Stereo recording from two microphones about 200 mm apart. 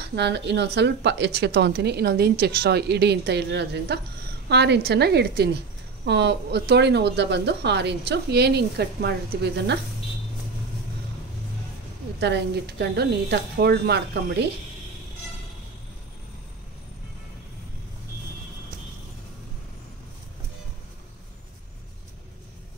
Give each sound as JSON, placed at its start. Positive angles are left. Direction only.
{"t": 0.0, "sound": "a woman's voice", "side_deg": -55}
{"t": 12.2, "sound": "a woman's voice", "side_deg": -60}